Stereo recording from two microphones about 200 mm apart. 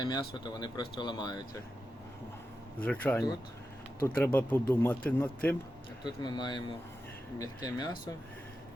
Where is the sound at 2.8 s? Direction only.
5° left (ahead or behind).